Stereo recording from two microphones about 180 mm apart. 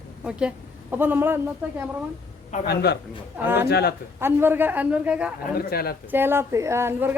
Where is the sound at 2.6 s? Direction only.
65° left (ahead or behind).